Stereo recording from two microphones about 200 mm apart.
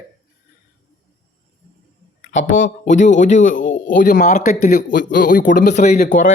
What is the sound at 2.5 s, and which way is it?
Speech, 40° left (ahead or behind).